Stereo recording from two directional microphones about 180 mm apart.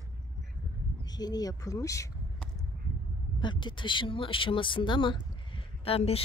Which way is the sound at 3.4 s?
25° left (ahead or behind).